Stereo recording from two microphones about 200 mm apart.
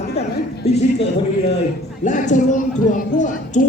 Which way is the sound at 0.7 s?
30° left (ahead or behind).